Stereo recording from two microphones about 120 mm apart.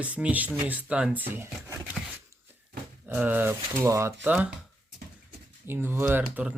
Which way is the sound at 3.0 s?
15° right (ahead or behind).